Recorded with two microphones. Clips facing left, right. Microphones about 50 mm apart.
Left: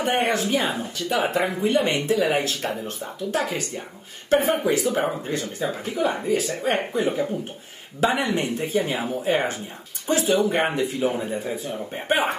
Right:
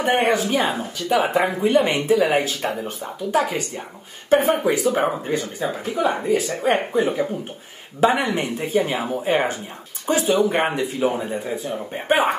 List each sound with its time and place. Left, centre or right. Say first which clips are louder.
0.2 s speech: right 3 dB; centre
5.0 s speech: right 4 dB; centre
5.7 s speech: right 3 dB; centre
8.0 s speech: right 3 dB; centre
10.2 s speech: right 2 dB; centre